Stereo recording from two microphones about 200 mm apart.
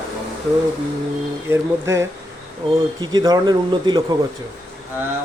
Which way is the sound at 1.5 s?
15° right (ahead or behind).